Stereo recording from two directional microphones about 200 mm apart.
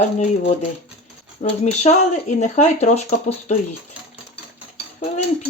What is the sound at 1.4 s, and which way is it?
Speech, 35° left (ahead or behind).